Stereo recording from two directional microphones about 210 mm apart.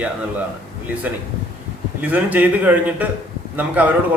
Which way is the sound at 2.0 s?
10° right (ahead or behind).